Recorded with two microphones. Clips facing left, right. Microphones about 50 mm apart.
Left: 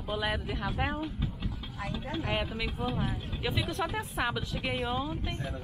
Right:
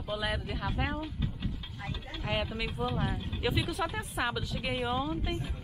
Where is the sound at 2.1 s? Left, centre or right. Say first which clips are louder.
Left 1 dB; centre.